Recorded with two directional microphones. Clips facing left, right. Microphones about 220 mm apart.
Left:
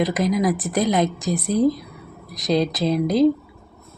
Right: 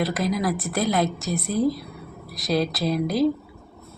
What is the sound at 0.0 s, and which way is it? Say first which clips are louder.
A woman's voice: left 4 dB; 20° left (ahead or behind).